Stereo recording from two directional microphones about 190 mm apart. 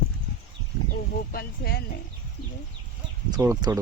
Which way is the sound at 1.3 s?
55° left (ahead or behind).